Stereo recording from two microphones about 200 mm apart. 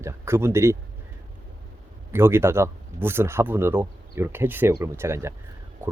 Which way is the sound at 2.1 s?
10° right (ahead or behind).